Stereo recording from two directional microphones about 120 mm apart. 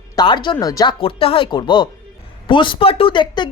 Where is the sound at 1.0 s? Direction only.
50° left (ahead or behind).